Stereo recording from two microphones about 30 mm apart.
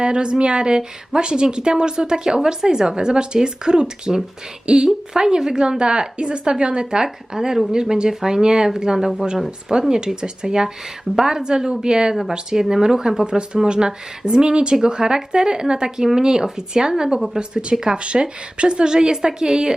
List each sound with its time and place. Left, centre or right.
0.0 s a woman's voice: right
13.2 s speech: right